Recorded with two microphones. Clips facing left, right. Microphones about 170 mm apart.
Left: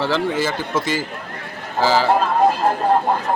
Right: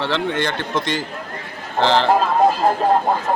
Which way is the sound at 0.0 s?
5° left (ahead or behind).